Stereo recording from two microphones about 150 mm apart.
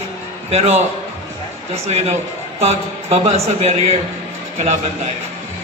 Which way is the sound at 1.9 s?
45° right (ahead or behind).